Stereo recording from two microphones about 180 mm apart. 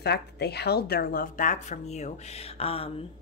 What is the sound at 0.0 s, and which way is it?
A woman's voice, 65° left (ahead or behind).